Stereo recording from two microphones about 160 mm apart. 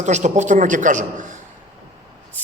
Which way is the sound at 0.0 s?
45° right (ahead or behind).